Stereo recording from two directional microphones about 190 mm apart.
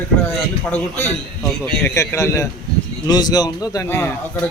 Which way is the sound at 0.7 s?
10° left (ahead or behind).